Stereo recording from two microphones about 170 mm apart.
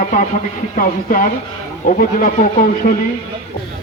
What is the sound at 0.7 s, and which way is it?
Speech, 55° left (ahead or behind).